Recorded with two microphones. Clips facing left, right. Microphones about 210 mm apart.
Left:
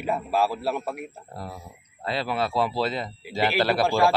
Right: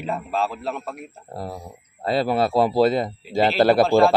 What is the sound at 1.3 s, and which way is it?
Speech, 35° right (ahead or behind).